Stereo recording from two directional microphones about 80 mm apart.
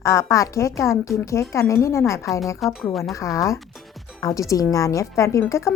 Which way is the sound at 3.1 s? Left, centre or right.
Left.